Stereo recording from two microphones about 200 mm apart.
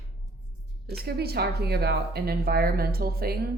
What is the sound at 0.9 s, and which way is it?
A woman's voice, 55° right (ahead or behind).